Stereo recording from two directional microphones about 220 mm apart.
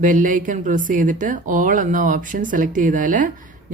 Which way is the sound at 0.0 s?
40° right (ahead or behind).